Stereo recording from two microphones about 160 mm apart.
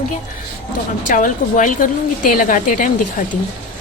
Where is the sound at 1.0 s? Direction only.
55° left (ahead or behind).